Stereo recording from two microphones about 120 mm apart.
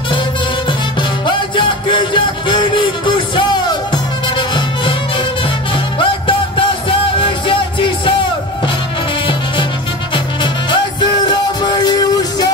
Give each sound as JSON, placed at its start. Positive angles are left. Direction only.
{"t": 1.2, "sound": "music", "side_deg": 45}
{"t": 10.1, "sound": "music", "side_deg": 40}